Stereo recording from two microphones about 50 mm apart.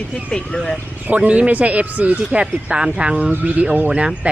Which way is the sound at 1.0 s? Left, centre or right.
Right.